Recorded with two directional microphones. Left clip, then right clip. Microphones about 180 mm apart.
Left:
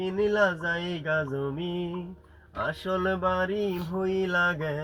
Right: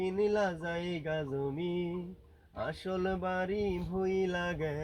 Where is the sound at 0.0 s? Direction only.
10° right (ahead or behind).